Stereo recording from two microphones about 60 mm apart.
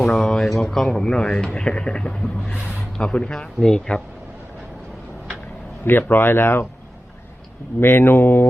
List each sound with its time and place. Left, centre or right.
0.0 s speech: centre
5.8 s speech: left
7.8 s speech: left